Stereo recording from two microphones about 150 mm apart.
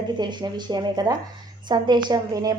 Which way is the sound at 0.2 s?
30° right (ahead or behind).